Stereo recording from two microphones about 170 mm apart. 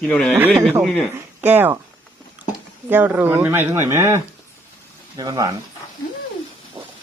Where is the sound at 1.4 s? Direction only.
10° right (ahead or behind).